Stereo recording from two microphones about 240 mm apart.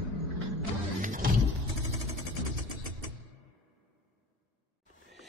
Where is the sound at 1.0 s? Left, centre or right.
Right.